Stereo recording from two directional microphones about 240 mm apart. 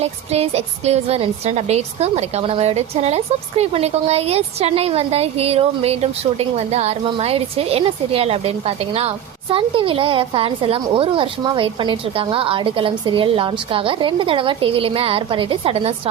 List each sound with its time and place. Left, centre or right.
0.0 s a woman's voice: right